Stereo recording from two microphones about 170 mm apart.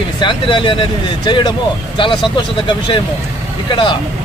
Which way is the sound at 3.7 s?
30° left (ahead or behind).